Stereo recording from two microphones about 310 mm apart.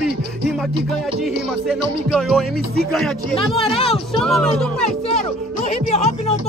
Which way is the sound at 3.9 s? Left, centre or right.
Centre.